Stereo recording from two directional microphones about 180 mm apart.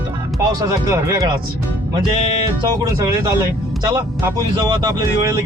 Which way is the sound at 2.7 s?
20° right (ahead or behind).